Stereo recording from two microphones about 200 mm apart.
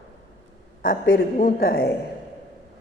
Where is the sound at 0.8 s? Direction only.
45° left (ahead or behind).